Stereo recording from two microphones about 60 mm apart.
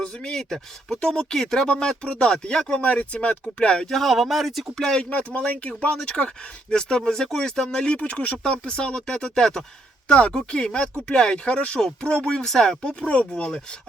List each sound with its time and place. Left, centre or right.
0.0 s speech: centre
3.8 s speech: centre
4.8 s speech: centre
12.8 s speech: centre